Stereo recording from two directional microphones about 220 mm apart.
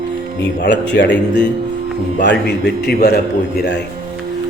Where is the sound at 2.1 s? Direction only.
50° left (ahead or behind).